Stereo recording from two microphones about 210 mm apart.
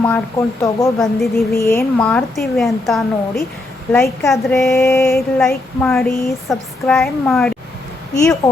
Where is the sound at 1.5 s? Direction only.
15° left (ahead or behind).